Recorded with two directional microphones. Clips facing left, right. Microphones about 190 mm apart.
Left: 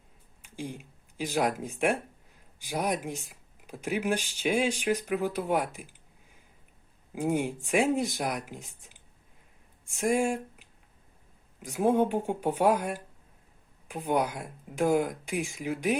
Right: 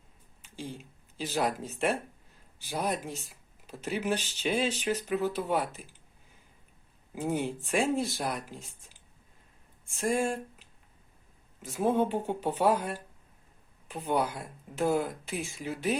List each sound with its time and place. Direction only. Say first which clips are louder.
0.4 s speech: left 2 dB; 15° left (ahead or behind)
7.1 s speech: left 3 dB; 10° left (ahead or behind)